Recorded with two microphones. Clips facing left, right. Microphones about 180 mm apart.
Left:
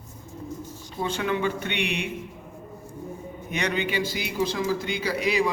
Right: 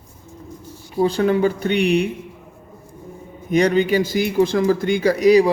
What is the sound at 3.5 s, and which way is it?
Speech, 40° right (ahead or behind).